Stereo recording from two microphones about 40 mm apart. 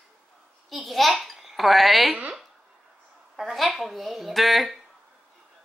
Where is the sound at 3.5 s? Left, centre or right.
Centre.